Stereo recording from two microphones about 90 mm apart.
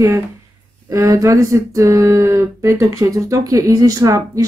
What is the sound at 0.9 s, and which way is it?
Speech, 35° right (ahead or behind).